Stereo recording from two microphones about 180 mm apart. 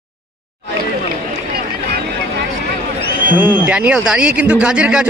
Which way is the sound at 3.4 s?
10° right (ahead or behind).